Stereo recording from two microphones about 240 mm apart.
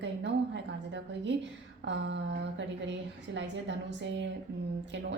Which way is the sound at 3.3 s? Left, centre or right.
Right.